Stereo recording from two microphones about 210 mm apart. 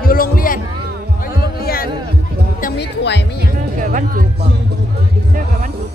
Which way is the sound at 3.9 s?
40° right (ahead or behind).